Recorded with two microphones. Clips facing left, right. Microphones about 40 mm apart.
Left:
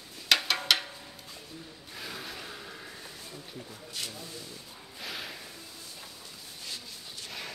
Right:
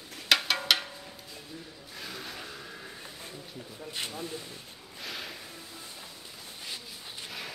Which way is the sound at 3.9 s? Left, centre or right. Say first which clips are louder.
Right 4 dB; right.